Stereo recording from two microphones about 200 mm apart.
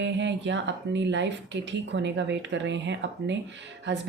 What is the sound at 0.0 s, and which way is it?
A woman's voice, 65° right (ahead or behind).